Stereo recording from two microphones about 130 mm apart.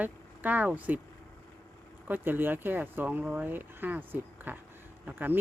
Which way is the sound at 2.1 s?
15° right (ahead or behind).